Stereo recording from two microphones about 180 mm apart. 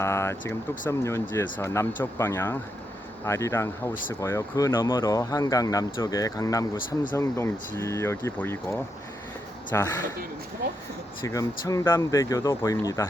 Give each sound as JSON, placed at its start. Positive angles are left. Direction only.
{"t": 0.0, "sound": "speech", "side_deg": 15}
{"t": 11.3, "sound": "speech", "side_deg": 20}